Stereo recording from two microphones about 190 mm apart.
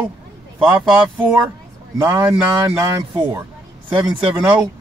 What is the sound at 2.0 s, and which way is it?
Speech, 15° right (ahead or behind).